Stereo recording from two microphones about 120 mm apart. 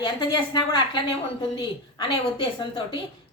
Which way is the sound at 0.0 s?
40° left (ahead or behind).